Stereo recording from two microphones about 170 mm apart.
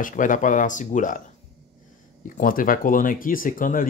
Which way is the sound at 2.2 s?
55° left (ahead or behind).